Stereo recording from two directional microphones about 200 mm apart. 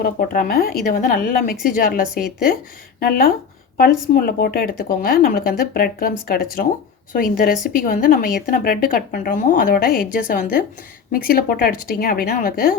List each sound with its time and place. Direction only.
0.0 s a woman's voice: 45° left (ahead or behind)